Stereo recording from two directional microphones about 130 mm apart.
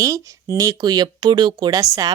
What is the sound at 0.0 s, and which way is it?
Speech, 25° right (ahead or behind).